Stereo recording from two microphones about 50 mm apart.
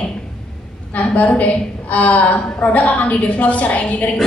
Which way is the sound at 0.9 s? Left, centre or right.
Left.